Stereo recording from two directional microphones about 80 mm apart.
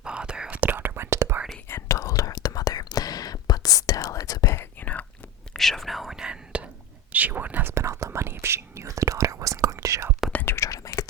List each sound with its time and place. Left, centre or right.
0.0 s whispering: centre
0.6 s whispering: right
1.6 s whispering: left
4.5 s whispering: left
5.5 s whispering: centre; by 10.1 s right
10.3 s whispering: left
10.6 s whispering: left